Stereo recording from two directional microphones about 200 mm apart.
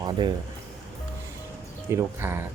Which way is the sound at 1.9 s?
10° right (ahead or behind).